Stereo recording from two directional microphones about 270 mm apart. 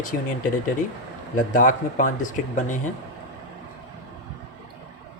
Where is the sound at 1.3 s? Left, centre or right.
Left.